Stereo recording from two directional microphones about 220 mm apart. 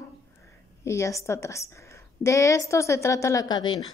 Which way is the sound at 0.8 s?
15° left (ahead or behind).